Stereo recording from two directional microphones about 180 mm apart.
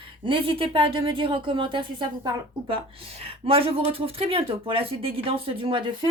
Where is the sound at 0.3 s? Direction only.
30° right (ahead or behind).